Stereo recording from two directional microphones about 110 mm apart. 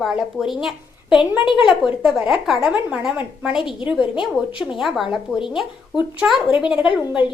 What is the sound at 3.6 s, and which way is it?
Speech, 50° left (ahead or behind).